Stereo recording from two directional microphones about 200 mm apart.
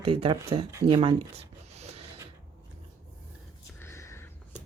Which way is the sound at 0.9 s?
25° right (ahead or behind).